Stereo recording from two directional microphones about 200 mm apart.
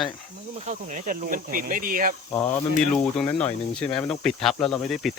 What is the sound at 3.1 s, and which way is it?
Speech, 5° left (ahead or behind).